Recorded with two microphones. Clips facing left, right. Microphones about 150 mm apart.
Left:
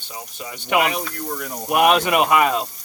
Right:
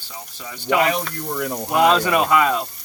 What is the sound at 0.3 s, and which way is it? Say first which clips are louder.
Speech: right 1 dB; 20° left (ahead or behind).